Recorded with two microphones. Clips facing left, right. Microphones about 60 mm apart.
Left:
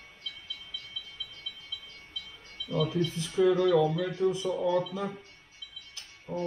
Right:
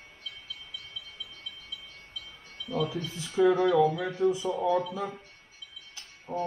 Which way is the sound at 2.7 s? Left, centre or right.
Centre.